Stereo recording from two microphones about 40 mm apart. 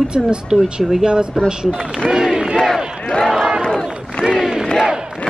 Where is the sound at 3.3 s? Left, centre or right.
Centre.